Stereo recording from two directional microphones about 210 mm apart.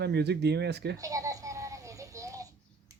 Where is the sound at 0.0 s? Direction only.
50° right (ahead or behind).